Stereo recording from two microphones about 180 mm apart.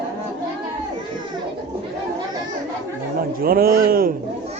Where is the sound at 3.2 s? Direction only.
55° right (ahead or behind).